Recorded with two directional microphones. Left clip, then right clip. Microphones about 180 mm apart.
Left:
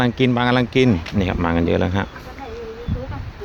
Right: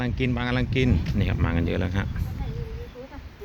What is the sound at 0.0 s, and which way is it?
Speech, 20° left (ahead or behind).